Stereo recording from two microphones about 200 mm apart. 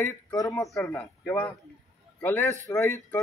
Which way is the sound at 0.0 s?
15° left (ahead or behind).